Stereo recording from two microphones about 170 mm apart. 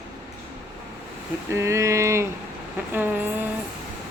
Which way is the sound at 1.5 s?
15° right (ahead or behind).